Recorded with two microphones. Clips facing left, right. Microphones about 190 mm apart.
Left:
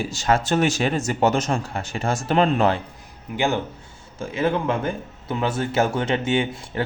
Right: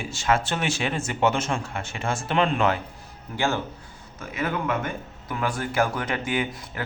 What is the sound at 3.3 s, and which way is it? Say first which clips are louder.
Speech: left 3 dB; 15° left (ahead or behind).